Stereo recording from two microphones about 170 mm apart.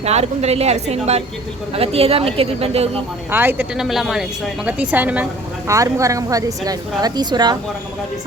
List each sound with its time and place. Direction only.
0.0 s speech: 40° right (ahead or behind)
3.3 s a woman's voice: 10° right (ahead or behind)
3.8 s a woman's voice: centre (ahead or behind); by 7.6 s 25° right (ahead or behind)